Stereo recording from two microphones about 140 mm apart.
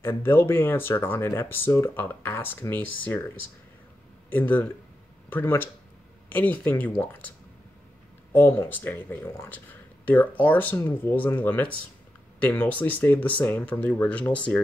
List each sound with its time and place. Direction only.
0.0 s speech: 15° left (ahead or behind)
4.3 s speech: 15° left (ahead or behind)